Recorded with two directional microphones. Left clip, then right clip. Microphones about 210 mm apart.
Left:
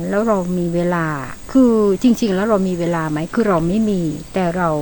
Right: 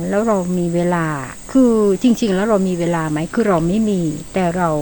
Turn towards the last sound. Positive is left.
turn(degrees=-5)  # may be behind; listen again after turning